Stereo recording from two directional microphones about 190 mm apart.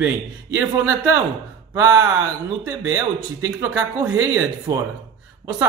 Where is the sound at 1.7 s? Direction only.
15° right (ahead or behind).